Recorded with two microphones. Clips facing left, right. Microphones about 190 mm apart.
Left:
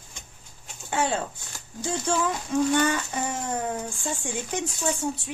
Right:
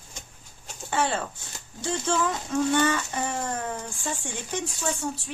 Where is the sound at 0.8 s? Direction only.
10° left (ahead or behind).